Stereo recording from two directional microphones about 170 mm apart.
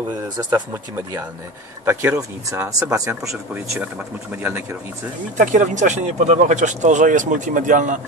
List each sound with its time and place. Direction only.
0.4 s speech: 20° right (ahead or behind)
5.4 s speech: 45° right (ahead or behind)